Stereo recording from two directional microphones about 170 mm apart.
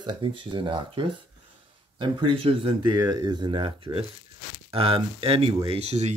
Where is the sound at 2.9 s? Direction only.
20° right (ahead or behind).